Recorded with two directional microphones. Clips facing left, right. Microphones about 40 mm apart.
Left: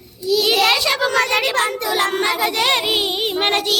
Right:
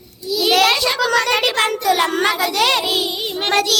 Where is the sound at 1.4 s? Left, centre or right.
Right.